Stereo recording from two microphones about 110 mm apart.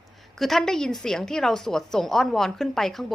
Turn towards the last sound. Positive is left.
turn(degrees=5)  # may be behind; listen again after turning